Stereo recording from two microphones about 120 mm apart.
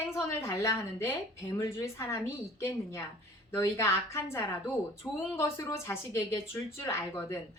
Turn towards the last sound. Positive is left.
turn(degrees=25)  # may be behind; listen again after turning